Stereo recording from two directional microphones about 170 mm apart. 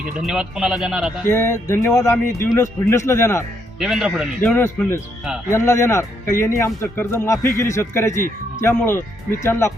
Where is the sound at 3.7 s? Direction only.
5° right (ahead or behind).